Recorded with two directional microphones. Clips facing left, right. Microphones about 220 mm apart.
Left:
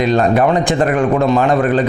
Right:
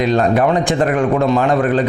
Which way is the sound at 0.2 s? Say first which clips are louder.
Left 1 dB; 20° left (ahead or behind).